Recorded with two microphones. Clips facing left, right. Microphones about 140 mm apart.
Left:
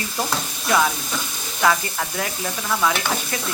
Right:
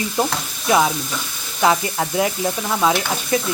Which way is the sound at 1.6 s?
20° right (ahead or behind).